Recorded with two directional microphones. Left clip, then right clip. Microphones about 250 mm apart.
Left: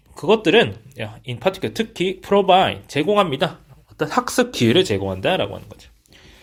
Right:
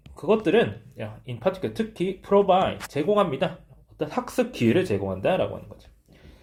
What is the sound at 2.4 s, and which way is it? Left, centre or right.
Speech, left.